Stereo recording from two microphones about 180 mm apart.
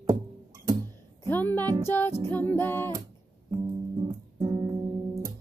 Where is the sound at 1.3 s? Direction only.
10° left (ahead or behind).